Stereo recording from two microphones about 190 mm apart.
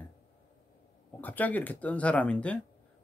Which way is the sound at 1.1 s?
10° left (ahead or behind).